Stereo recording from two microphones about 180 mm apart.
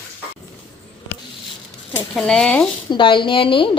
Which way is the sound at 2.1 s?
5° left (ahead or behind).